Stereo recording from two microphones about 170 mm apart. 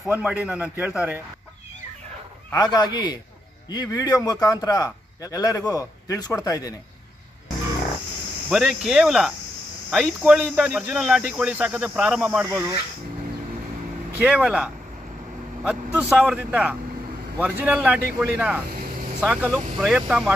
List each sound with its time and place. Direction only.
0.0 s a man's voice: 5° right (ahead or behind)
2.5 s a man's voice: 25° left (ahead or behind)
8.5 s speech: centre (ahead or behind)
14.2 s a man's voice: 10° right (ahead or behind)